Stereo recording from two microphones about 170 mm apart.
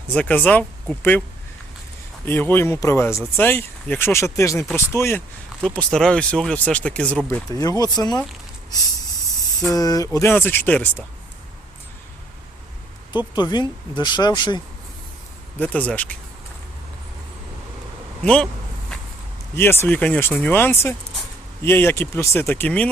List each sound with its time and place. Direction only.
0.1 s speech: 10° left (ahead or behind)
2.2 s speech: 10° left (ahead or behind)
9.6 s speech: 20° left (ahead or behind)
13.3 s speech: 25° left (ahead or behind)
15.6 s speech: 10° left (ahead or behind)
18.2 s speech: 5° left (ahead or behind)
19.5 s speech: 15° left (ahead or behind)